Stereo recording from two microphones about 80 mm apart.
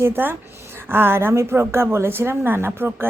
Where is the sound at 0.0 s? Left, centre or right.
Right.